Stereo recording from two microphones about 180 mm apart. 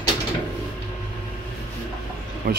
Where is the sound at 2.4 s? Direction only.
50° right (ahead or behind).